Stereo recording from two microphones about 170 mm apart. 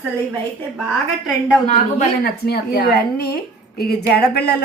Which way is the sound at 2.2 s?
65° left (ahead or behind).